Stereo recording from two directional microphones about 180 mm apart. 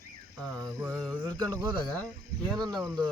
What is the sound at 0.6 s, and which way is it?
Speech, 15° right (ahead or behind).